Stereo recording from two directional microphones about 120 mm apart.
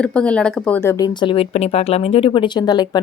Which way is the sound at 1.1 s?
45° left (ahead or behind).